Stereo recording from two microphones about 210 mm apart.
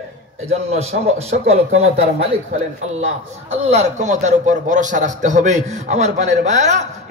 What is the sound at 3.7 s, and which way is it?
A man's voice, 35° right (ahead or behind).